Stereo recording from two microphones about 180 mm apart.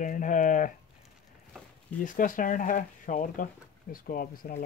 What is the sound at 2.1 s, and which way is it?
Speech, 50° left (ahead or behind).